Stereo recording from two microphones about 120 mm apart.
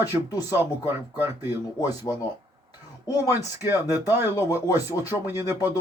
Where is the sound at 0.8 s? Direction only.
20° right (ahead or behind).